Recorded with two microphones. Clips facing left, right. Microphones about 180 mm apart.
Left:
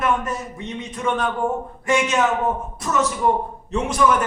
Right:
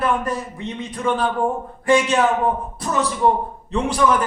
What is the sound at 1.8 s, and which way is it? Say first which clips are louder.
A woman's voice: right 3 dB; 35° right (ahead or behind).